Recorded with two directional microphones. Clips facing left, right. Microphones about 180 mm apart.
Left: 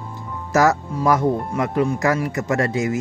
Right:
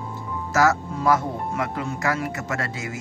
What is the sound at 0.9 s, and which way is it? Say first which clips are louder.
Speech: left 2 dB; 15° left (ahead or behind).